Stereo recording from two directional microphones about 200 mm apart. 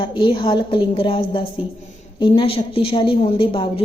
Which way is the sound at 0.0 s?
25° left (ahead or behind).